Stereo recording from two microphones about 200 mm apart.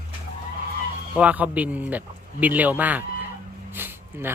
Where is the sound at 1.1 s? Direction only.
5° right (ahead or behind).